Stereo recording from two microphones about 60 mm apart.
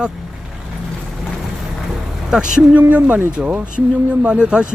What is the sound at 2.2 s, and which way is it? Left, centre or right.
Speech, centre.